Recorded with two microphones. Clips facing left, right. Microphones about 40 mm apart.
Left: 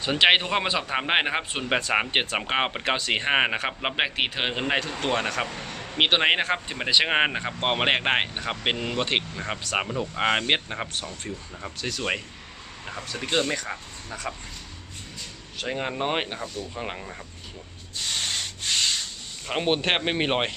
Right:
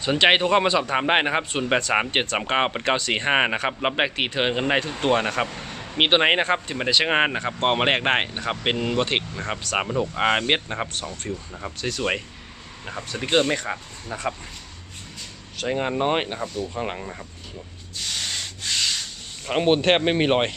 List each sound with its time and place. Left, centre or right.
0.0 s speech: centre
13.2 s speech: right
15.5 s speech: centre
19.5 s speech: centre